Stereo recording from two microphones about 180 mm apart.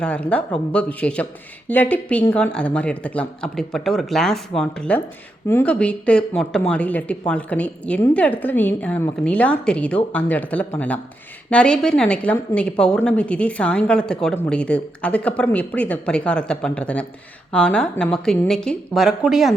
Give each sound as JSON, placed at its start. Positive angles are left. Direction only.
{"t": 0.0, "sound": "a woman's voice", "side_deg": 5}